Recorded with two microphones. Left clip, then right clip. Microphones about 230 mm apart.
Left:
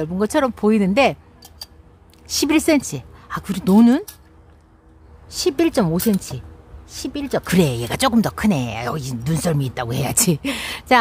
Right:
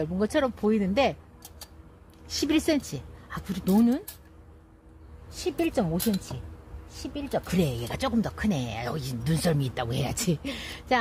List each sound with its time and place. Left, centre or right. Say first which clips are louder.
0.0 s speech: left 7 dB; centre
2.2 s speech: left 8 dB; left
5.3 s speech: left 10 dB; left